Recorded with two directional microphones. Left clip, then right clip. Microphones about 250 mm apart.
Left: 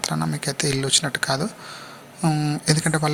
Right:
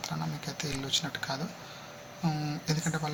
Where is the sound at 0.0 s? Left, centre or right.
Left.